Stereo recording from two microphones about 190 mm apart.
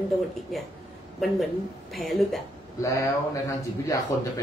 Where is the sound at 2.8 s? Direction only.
15° left (ahead or behind).